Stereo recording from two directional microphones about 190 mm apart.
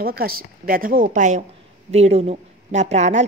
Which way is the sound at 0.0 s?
50° right (ahead or behind).